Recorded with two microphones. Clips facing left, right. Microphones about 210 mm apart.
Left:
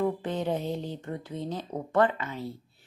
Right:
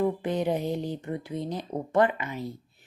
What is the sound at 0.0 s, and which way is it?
Speech, 15° right (ahead or behind).